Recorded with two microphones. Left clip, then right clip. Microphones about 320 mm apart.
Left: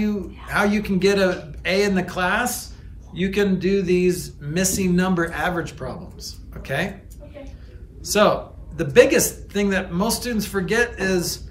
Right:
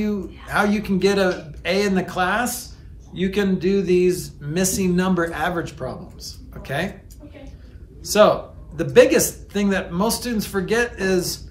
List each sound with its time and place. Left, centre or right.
0.0 s speech: centre
8.0 s speech: centre